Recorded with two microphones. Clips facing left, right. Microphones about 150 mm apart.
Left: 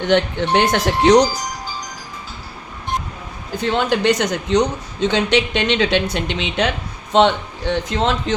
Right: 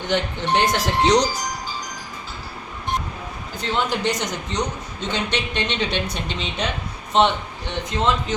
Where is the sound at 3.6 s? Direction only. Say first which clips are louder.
Left 5 dB; 60° left (ahead or behind); by 8.4 s 90° left.